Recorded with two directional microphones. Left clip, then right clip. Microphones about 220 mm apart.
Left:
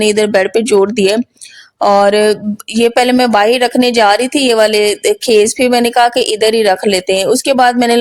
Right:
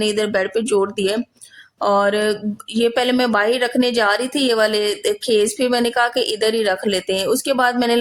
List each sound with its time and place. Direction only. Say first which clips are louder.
0.0 s speech: left 8 dB; 30° left (ahead or behind)